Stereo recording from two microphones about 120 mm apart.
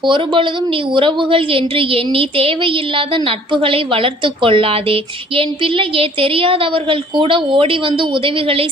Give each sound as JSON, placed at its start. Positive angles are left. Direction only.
{"t": 0.9, "sound": "a woman's voice", "side_deg": -45}